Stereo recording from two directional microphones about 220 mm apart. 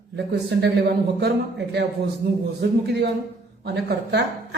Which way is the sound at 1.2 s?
50° right (ahead or behind).